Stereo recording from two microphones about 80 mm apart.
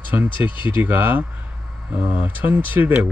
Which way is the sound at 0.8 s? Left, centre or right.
Right.